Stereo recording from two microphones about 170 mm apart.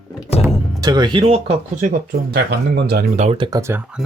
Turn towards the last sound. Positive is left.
turn(degrees=-30)  # may be behind; listen again after turning